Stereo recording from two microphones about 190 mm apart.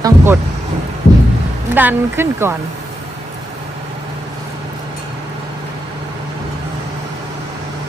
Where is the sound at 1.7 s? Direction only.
10° right (ahead or behind).